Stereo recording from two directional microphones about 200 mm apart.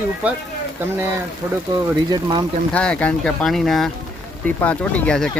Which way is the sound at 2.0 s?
20° right (ahead or behind).